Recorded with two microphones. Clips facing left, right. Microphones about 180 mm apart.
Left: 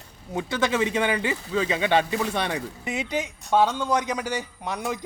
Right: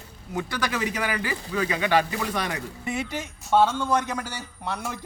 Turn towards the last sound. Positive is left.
turn(degrees=15)  # may be behind; listen again after turning